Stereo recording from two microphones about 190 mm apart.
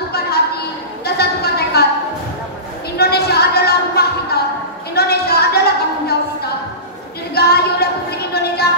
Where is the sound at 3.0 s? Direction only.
55° left (ahead or behind).